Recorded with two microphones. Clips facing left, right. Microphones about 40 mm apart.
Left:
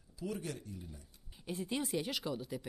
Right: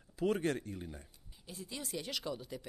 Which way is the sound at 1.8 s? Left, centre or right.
Centre.